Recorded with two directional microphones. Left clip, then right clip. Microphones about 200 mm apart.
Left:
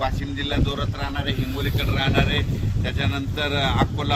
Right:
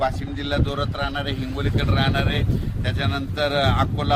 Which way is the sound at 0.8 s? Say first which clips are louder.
Right 3 dB; 25° right (ahead or behind).